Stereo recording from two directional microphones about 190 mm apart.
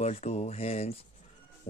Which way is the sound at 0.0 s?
35° left (ahead or behind).